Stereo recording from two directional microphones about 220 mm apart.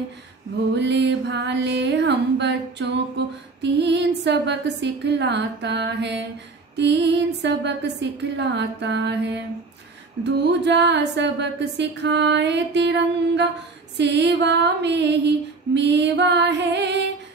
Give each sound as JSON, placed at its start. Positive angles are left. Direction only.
{"t": 0.7, "sound": "a woman's voice", "side_deg": -50}